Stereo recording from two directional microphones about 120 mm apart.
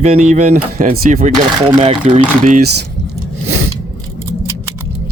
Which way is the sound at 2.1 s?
90° right.